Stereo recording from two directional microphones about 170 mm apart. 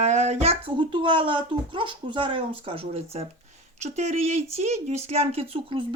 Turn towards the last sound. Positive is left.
turn(degrees=-30)  # may be behind; listen again after turning